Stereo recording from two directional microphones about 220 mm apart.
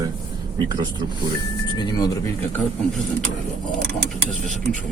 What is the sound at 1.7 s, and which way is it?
Speech, 20° left (ahead or behind).